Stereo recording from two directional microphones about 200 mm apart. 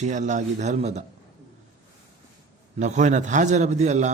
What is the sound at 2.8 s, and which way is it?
A man's voice, 35° right (ahead or behind).